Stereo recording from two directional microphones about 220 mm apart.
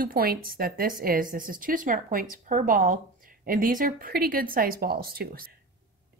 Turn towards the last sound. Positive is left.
turn(degrees=-40)  # may be behind; listen again after turning